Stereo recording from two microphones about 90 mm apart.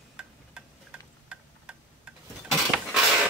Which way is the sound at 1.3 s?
10° right (ahead or behind).